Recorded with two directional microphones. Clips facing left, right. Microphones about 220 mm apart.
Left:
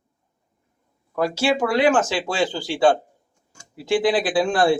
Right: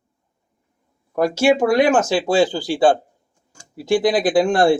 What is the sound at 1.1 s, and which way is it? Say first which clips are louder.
Speech: right 5 dB; 45° right (ahead or behind).